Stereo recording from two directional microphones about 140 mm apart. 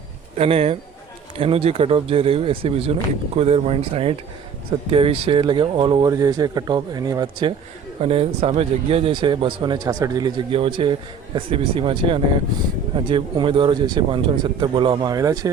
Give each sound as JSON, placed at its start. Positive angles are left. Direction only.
{"t": 0.3, "sound": "speech", "side_deg": -45}
{"t": 8.0, "sound": "speech", "side_deg": -45}